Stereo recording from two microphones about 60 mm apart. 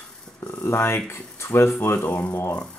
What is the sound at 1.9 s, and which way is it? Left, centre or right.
Speech, left.